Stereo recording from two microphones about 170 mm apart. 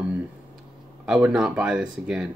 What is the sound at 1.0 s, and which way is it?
Speech, 5° right (ahead or behind).